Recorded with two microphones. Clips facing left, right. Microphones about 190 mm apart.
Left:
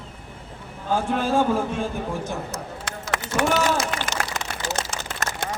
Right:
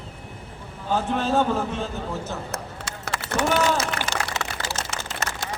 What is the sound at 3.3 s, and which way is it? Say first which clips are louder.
Speech: left 1 dB; 60° right (ahead or behind).